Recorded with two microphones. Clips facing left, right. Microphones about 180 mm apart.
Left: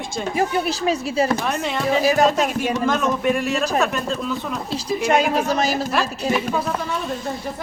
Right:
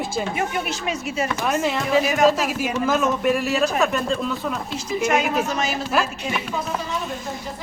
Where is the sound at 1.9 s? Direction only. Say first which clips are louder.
Left 2 dB; 35° left (ahead or behind).